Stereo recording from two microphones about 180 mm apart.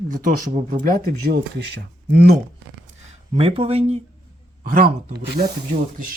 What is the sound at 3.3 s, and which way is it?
Speech, 30° right (ahead or behind).